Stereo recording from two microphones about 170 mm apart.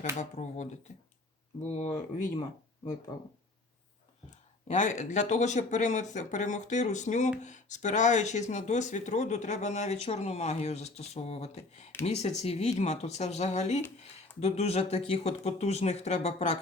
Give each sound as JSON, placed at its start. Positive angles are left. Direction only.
{"t": 0.2, "sound": "speech", "side_deg": 45}
{"t": 4.7, "sound": "speech", "side_deg": 45}